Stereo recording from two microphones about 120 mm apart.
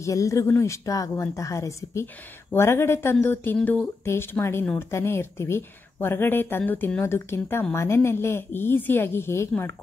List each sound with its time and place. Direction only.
0.0 s speech: 25° left (ahead or behind)